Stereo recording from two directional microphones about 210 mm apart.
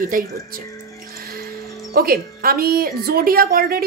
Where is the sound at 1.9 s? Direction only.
45° right (ahead or behind).